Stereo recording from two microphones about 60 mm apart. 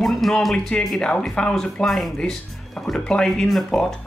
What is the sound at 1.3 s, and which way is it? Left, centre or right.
Speech, centre.